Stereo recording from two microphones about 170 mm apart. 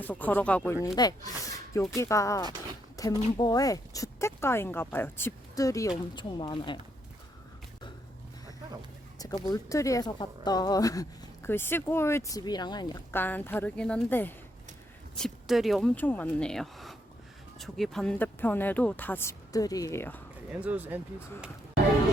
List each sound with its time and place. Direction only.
0.0 s speech: 10° left (ahead or behind)
0.9 s speech: 25° left (ahead or behind)
2.9 s a sound: 20° left (ahead or behind)
3.3 s speech: 25° left (ahead or behind)
9.1 s speech: 25° left (ahead or behind)
13.1 s speech: 10° left (ahead or behind)
15.2 s speech: centre (ahead or behind)
16.0 s speech: 10° left (ahead or behind)
20.5 s speech: 10° right (ahead or behind)